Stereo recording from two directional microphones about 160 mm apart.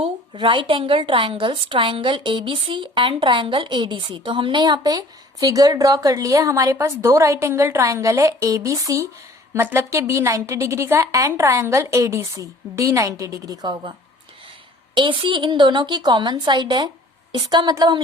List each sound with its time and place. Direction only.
0.0 s a woman's voice: 30° right (ahead or behind)
14.9 s a woman's voice: 30° right (ahead or behind)